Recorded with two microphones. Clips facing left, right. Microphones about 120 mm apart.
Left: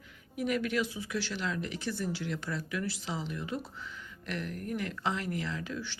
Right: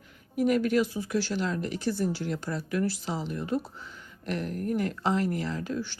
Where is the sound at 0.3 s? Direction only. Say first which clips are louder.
Right 7 dB; 40° right (ahead or behind).